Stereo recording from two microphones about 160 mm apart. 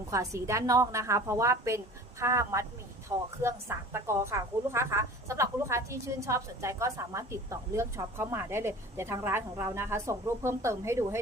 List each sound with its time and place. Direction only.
0.1 s a woman's voice: 20° right (ahead or behind)